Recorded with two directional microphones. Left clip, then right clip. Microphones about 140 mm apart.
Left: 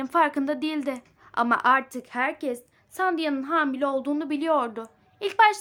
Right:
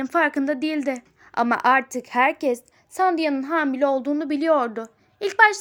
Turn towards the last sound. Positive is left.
turn(degrees=-30)  # may be behind; listen again after turning